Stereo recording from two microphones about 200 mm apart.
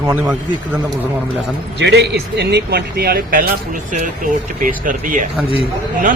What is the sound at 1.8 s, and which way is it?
A man's voice, 55° right (ahead or behind).